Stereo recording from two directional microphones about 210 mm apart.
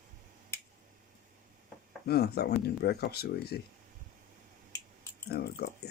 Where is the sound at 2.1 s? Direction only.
50° left (ahead or behind).